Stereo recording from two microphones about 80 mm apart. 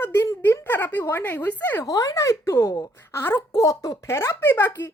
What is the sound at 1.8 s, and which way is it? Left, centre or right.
A woman's voice, left.